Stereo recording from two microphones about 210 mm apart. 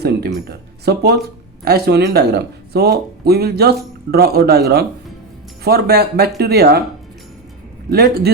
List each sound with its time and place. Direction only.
0.0 s a sound: 50° right (ahead or behind)
1.6 s speech: 50° right (ahead or behind)
7.9 s speech: 50° right (ahead or behind)